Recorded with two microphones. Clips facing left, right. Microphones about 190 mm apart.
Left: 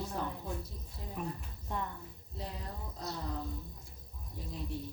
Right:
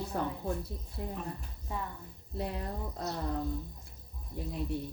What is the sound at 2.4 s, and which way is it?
Speech, 60° right (ahead or behind).